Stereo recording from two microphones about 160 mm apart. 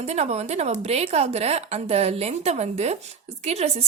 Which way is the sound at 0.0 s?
45° right (ahead or behind).